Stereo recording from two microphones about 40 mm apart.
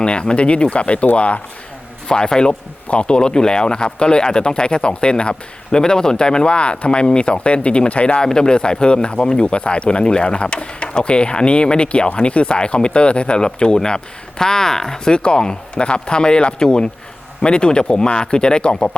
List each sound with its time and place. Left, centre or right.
0.0 s speech: left
2.0 s speech: centre